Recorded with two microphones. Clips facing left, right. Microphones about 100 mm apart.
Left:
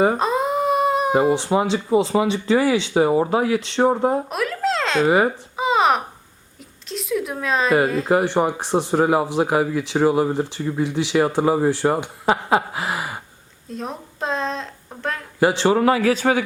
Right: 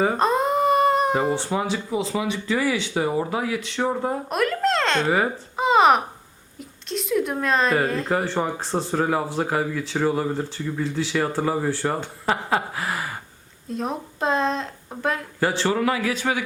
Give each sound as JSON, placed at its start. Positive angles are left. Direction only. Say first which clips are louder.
{"t": 0.2, "sound": "humming", "louder": "even", "side_deg": 0}
{"t": 1.3, "sound": "speech", "louder": "left 5 dB", "side_deg": 20}
{"t": 1.9, "sound": "speech", "louder": "left 7 dB", "side_deg": 40}
{"t": 4.3, "sound": "a child's voice", "louder": "right 1 dB", "side_deg": 0}
{"t": 5.5, "sound": "a sound", "louder": "right 2 dB", "side_deg": 0}
{"t": 6.8, "sound": "speech", "louder": "right 1 dB", "side_deg": 0}
{"t": 13.7, "sound": "speech", "louder": "right 3 dB", "side_deg": 0}
{"t": 15.4, "sound": "speech", "louder": "left 7 dB", "side_deg": 20}
{"t": 15.7, "sound": "speech", "louder": "left 6 dB", "side_deg": 35}